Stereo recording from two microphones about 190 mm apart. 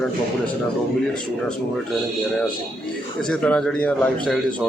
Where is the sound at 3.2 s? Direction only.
5° left (ahead or behind).